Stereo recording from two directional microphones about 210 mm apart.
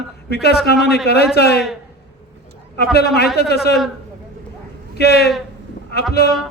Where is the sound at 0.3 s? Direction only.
50° left (ahead or behind).